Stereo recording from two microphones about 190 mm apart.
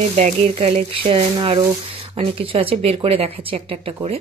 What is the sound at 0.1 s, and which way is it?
Speech, 35° right (ahead or behind).